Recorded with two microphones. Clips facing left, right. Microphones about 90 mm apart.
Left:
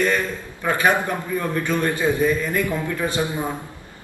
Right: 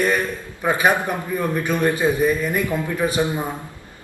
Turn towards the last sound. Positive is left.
turn(degrees=-20)  # may be behind; listen again after turning